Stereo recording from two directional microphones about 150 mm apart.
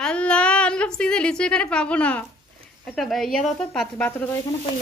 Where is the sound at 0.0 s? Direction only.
10° left (ahead or behind).